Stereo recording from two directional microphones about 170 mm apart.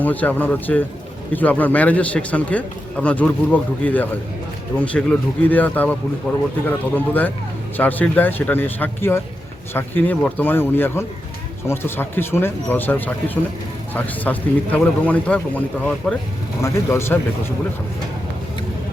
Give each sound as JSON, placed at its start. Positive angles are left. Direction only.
{"t": 0.0, "sound": "a man's voice", "side_deg": 10}